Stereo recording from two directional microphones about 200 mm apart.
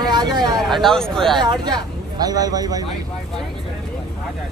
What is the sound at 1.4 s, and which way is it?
Speech, 20° right (ahead or behind).